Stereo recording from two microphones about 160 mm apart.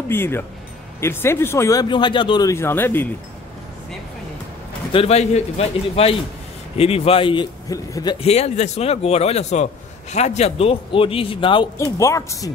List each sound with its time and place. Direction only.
0.1 s speech: 15° left (ahead or behind)
2.5 s speech: 15° left (ahead or behind)
4.9 s a man's voice: 40° left (ahead or behind); by 8.2 s 25° left (ahead or behind)
8.2 s a man's voice: 40° left (ahead or behind)
12.0 s speech: 20° left (ahead or behind)